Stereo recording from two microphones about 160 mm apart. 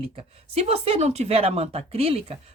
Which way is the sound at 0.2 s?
40° right (ahead or behind).